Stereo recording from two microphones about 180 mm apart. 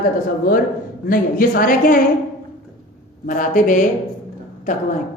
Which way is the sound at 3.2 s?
45° left (ahead or behind).